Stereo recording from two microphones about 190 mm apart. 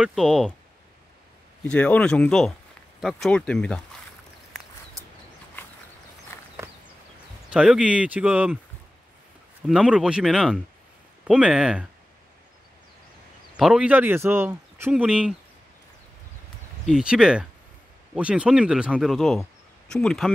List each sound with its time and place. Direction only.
0.0 s speech: centre (ahead or behind)
1.7 s speech: 5° left (ahead or behind)
5.0 s a sound: 15° right (ahead or behind)
6.3 s a sound: 15° left (ahead or behind)
7.5 s speech: 5° right (ahead or behind)
9.7 s speech: 5° right (ahead or behind)
13.6 s speech: 5° right (ahead or behind)
16.8 s speech: 5° right (ahead or behind)